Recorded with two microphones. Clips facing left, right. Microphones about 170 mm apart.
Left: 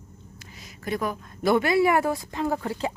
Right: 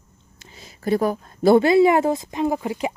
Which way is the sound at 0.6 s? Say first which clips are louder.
Right 8 dB; 30° right (ahead or behind).